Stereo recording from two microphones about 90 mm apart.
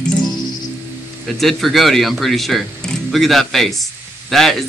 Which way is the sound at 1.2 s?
Centre (ahead or behind).